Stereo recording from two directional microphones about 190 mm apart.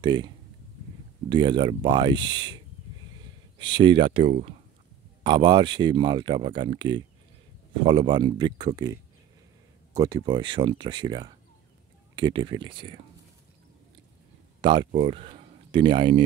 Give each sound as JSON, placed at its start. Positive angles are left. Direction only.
{"t": 0.0, "sound": "speech", "side_deg": -25}
{"t": 1.3, "sound": "speech", "side_deg": -25}
{"t": 14.6, "sound": "speech", "side_deg": -25}